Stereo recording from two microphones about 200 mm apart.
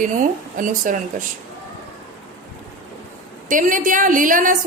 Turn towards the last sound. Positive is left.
turn(degrees=-40)  # may be behind; listen again after turning